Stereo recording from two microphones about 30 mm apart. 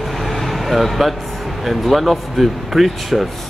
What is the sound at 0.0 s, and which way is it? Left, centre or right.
Speech, centre.